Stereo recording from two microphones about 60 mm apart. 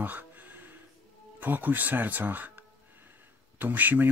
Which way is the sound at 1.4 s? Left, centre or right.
Right.